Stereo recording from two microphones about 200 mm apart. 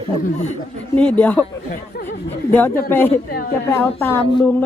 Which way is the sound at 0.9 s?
5° left (ahead or behind).